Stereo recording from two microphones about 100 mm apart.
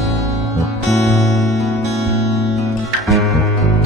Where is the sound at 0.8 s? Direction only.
30° left (ahead or behind).